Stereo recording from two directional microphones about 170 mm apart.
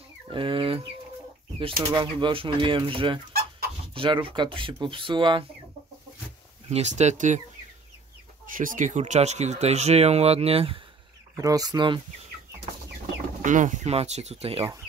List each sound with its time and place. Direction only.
0.3 s chicken: 30° right (ahead or behind)
1.9 s speech: 25° right (ahead or behind)
3.3 s chicken: 60° right (ahead or behind)
3.9 s speech: 30° right (ahead or behind)
6.7 s speech: 40° right (ahead or behind)
8.5 s speech: 50° right (ahead or behind); by 10.8 s 35° right (ahead or behind)
11.3 s speech: 20° right (ahead or behind)
13.4 s speech: 45° right (ahead or behind)